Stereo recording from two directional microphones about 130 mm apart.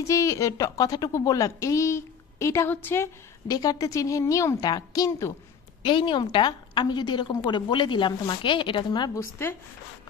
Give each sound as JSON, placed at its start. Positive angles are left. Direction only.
{"t": 0.0, "sound": "a woman's voice", "side_deg": 25}
{"t": 3.4, "sound": "a woman's voice", "side_deg": 30}
{"t": 5.8, "sound": "a woman's voice", "side_deg": 40}